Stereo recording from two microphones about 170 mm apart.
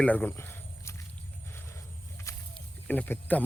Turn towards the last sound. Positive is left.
turn(degrees=10)  # may be behind; listen again after turning